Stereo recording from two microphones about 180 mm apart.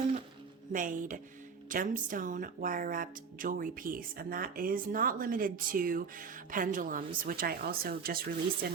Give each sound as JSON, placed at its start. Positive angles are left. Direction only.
{"t": 0.7, "sound": "speech", "side_deg": -45}